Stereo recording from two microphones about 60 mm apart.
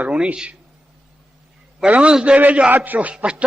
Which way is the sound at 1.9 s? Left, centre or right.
Centre.